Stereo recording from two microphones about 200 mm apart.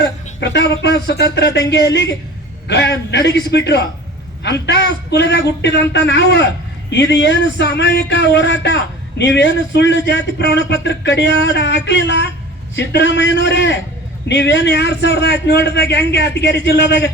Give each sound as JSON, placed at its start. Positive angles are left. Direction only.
{"t": 0.0, "sound": "a man's voice", "side_deg": 60}